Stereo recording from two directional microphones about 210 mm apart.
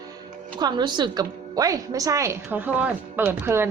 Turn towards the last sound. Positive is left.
turn(degrees=-10)  # may be behind; listen again after turning